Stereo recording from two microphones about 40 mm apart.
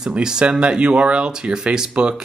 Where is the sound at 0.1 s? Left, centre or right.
Right.